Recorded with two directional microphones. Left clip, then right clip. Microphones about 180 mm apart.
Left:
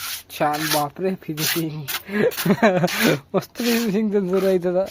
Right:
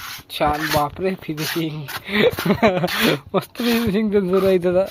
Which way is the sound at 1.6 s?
Centre (ahead or behind).